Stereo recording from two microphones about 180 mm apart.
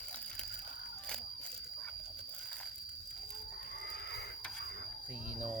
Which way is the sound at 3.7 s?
60° left (ahead or behind).